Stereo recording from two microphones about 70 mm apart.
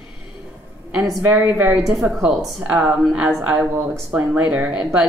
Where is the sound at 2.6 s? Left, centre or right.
Centre.